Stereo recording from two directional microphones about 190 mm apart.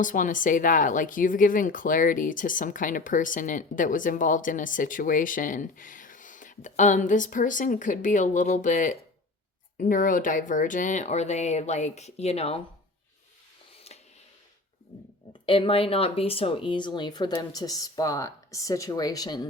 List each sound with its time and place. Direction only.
0.0 s speech: 45° left (ahead or behind)
13.7 s a sound: 35° left (ahead or behind)
15.3 s speech: 30° left (ahead or behind)